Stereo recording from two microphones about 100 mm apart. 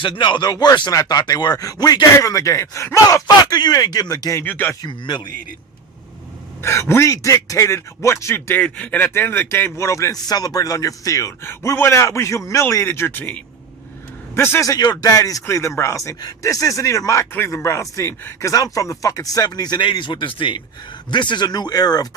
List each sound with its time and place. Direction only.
0.0 s speech: 50° left (ahead or behind); by 3.2 s 30° left (ahead or behind)
3.2 s speech: 45° left (ahead or behind)
4.4 s speech: 20° left (ahead or behind)
4.9 s speech: 45° left (ahead or behind)
6.6 s speech: 25° left (ahead or behind)
8.5 s speech: 15° left (ahead or behind)
14.7 s speech: 40° left (ahead or behind)